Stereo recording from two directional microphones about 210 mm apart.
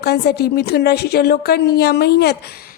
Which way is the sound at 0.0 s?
50° left (ahead or behind).